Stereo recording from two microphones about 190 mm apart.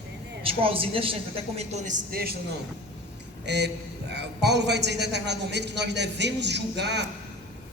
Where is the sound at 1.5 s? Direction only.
40° right (ahead or behind).